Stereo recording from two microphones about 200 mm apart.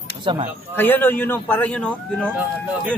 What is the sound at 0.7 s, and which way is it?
A man's voice, 10° left (ahead or behind).